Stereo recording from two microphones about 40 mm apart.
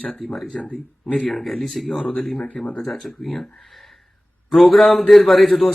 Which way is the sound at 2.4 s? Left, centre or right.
Left.